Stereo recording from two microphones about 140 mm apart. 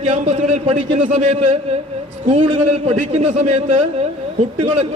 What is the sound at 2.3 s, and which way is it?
A man's voice, 50° right (ahead or behind).